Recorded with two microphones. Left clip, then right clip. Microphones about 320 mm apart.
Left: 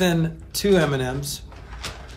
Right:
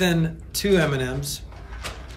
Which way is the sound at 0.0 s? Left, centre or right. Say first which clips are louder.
Left 1 dB; centre.